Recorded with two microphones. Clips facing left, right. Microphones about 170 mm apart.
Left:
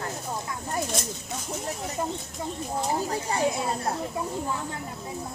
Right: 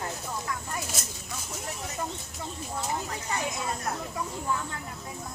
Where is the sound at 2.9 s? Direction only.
35° left (ahead or behind).